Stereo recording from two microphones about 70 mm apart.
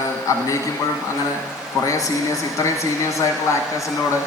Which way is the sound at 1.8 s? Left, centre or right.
Left.